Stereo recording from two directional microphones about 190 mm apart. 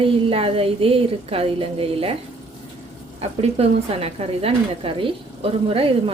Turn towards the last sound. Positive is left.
turn(degrees=-30)  # may be behind; listen again after turning